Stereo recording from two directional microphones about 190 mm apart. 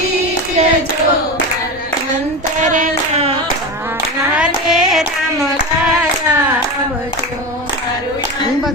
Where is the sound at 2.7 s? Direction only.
35° right (ahead or behind).